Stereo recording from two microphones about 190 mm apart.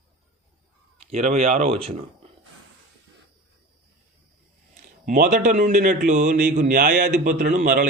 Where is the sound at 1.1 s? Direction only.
35° right (ahead or behind).